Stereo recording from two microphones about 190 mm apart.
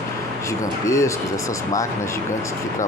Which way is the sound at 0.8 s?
15° left (ahead or behind).